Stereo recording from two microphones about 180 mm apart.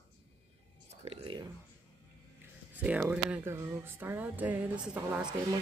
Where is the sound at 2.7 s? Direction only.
10° right (ahead or behind).